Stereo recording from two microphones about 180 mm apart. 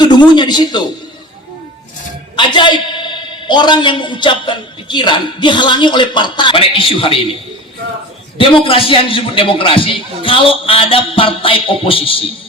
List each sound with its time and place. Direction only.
0.0 s a man's voice: 25° left (ahead or behind)
2.3 s a man's voice: 25° left (ahead or behind)
8.4 s a man's voice: 30° left (ahead or behind)